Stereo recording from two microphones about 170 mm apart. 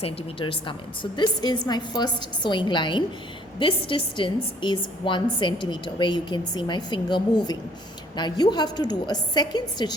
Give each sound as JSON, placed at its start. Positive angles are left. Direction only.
{"t": 0.0, "sound": "a woman's voice", "side_deg": 35}